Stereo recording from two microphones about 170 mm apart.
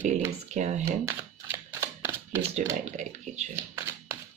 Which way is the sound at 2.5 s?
40° right (ahead or behind).